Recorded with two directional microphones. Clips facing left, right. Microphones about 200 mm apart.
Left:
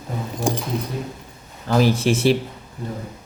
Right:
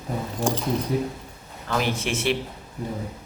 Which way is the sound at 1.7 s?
35° left (ahead or behind).